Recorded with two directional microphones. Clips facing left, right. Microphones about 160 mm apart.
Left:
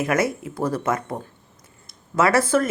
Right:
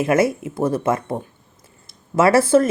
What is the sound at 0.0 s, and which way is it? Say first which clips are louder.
Speech: right 5 dB; 25° right (ahead or behind).